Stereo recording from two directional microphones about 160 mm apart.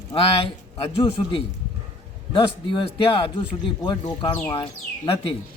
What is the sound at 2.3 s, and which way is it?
A man's voice, 30° left (ahead or behind).